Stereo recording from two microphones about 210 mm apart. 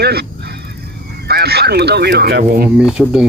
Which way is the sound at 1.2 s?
50° right (ahead or behind).